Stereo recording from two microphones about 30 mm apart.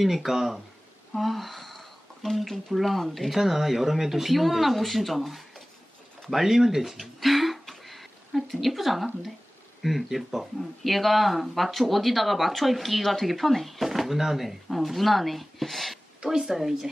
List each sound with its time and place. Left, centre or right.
0.0 s speech: centre
1.1 s sniff: centre
2.7 s speech: centre
6.3 s speech: centre
13.0 s speech: centre
16.2 s speech: right
16.5 s speech: centre